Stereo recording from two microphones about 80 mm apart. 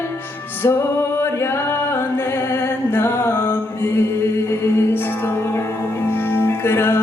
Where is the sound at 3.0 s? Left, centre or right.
Left.